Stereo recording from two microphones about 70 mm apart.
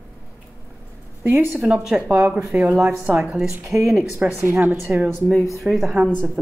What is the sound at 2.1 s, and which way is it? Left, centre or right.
Speech, right.